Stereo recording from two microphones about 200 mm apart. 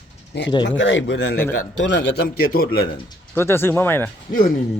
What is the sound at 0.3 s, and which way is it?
Speech, 60° left (ahead or behind).